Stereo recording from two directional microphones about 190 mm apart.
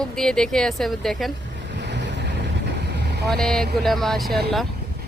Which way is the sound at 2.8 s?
60° right (ahead or behind).